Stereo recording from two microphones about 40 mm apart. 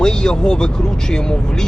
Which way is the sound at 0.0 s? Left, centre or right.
Centre.